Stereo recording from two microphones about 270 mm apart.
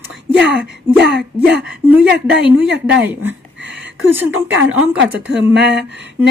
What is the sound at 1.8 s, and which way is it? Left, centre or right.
Speech, centre.